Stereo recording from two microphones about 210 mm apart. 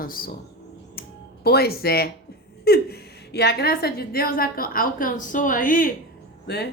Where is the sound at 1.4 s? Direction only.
50° left (ahead or behind).